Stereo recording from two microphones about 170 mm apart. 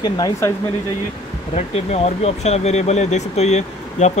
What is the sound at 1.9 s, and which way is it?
Speech, 40° left (ahead or behind).